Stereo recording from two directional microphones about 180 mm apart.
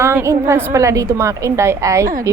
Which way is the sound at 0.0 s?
15° right (ahead or behind).